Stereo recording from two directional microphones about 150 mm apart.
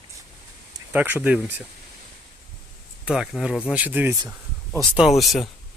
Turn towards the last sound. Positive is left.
turn(degrees=0)  # may be behind; listen again after turning